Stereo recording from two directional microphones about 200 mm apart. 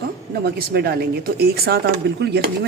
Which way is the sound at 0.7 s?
50° right (ahead or behind).